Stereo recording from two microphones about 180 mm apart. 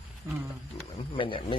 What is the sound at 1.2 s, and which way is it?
Speech, 30° left (ahead or behind).